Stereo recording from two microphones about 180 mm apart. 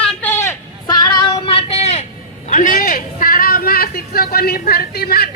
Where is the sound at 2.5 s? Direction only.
50° left (ahead or behind).